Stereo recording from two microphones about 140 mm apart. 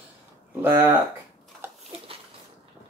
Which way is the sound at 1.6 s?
15° right (ahead or behind).